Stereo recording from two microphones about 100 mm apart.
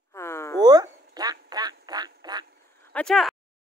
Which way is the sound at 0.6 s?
40° right (ahead or behind).